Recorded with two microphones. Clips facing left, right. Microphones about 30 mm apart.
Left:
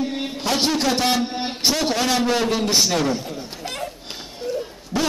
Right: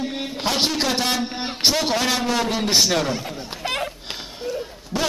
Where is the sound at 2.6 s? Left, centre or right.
Right.